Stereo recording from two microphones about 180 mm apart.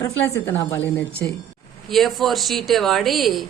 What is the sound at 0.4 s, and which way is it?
Speech, 15° left (ahead or behind).